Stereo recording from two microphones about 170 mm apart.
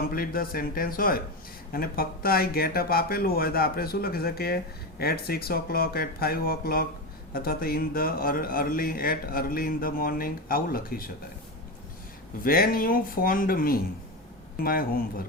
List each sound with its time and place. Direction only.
0.1 s speech: 60° left (ahead or behind)
12.4 s speech: 60° left (ahead or behind)